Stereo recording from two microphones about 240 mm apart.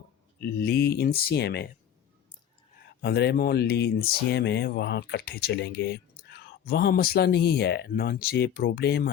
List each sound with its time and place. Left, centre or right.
0.3 s speech: left
3.0 s speech: left